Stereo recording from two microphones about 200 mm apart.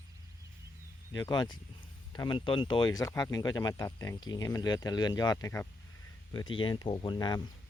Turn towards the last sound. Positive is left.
turn(degrees=20)  # may be behind; listen again after turning